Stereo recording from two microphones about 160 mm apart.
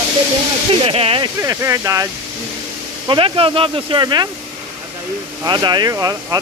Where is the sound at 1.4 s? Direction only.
15° right (ahead or behind).